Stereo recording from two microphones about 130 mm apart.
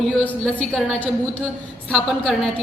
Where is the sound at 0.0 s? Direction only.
Centre (ahead or behind).